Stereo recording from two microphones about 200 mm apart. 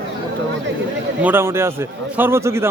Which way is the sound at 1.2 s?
10° right (ahead or behind).